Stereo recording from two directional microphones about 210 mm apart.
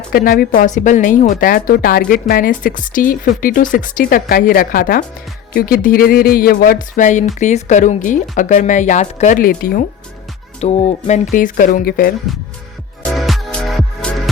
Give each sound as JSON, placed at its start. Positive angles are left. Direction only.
{"t": 0.1, "sound": "a woman's voice", "side_deg": 45}
{"t": 10.6, "sound": "speech", "side_deg": 30}
{"t": 13.1, "sound": "music", "side_deg": 0}